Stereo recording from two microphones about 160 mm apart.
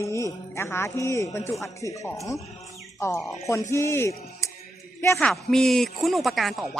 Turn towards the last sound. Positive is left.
turn(degrees=0)  # may be behind; listen again after turning